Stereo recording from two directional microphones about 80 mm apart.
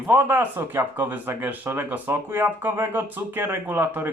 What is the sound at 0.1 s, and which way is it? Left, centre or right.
Speech, right.